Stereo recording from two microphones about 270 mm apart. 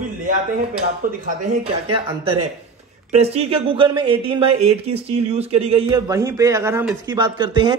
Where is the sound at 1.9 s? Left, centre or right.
Right.